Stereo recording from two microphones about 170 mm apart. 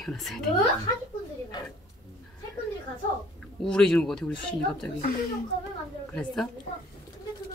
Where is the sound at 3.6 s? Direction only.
5° left (ahead or behind).